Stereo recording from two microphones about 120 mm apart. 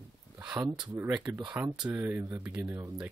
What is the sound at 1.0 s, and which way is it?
Speech, 20° right (ahead or behind).